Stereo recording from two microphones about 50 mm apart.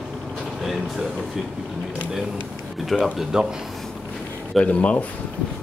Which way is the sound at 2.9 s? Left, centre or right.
Centre.